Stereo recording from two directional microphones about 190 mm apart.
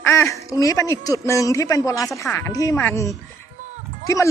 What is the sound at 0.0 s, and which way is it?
A man's voice, 15° left (ahead or behind).